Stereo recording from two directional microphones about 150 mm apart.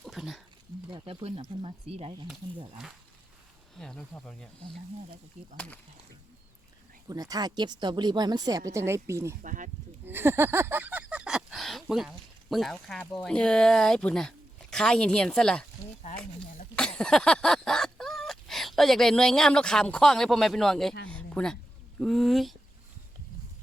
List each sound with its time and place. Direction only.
0.0 s a sound: centre (ahead or behind)
0.9 s speech: 30° right (ahead or behind)
3.8 s speech: 5° left (ahead or behind)
5.5 s speech: 10° left (ahead or behind)
7.1 s speech: 25° right (ahead or behind)
9.4 s speech: 60° right (ahead or behind)
10.1 s a sound: 15° right (ahead or behind); by 13.1 s 5° left (ahead or behind)
13.1 s speech: 5° left (ahead or behind)
16.7 s a sound: 5° left (ahead or behind)
22.0 s speech: centre (ahead or behind)